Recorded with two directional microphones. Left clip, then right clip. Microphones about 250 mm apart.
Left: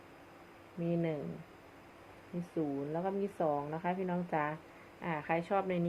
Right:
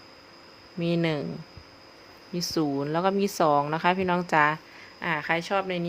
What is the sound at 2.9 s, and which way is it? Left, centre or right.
Speech, right.